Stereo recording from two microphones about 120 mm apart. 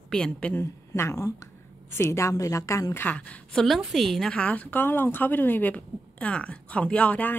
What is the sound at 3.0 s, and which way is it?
A woman's voice, 10° left (ahead or behind).